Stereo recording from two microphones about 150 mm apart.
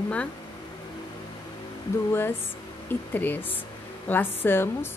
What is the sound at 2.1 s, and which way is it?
A woman's voice, 15° left (ahead or behind).